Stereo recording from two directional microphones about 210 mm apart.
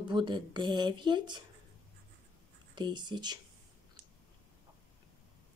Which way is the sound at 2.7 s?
20° right (ahead or behind).